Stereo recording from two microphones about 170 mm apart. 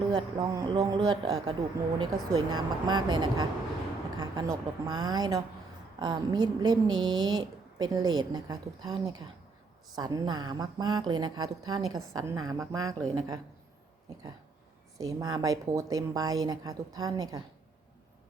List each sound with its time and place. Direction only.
0.1 s a woman's voice: 30° right (ahead or behind)
14.9 s a woman's voice: 20° right (ahead or behind)